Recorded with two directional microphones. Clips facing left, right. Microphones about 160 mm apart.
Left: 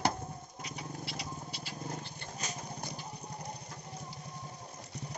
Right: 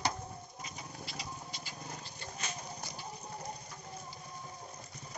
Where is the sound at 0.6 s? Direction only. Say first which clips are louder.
Left 7 dB; 70° left (ahead or behind).